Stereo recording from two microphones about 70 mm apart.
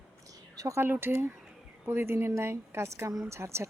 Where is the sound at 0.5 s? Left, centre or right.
Right.